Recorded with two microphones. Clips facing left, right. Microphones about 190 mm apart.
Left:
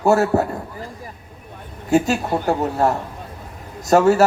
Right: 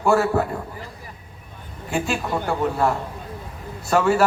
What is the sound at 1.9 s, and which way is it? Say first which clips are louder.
A man's voice: left 7 dB; 40° left (ahead or behind).